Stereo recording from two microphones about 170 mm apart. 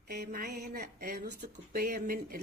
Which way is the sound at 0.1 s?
65° right (ahead or behind).